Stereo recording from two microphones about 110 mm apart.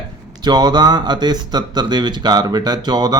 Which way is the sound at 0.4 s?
40° right (ahead or behind).